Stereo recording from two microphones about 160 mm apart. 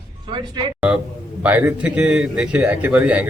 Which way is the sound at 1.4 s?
10° right (ahead or behind).